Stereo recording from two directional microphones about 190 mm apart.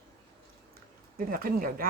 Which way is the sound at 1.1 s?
50° right (ahead or behind).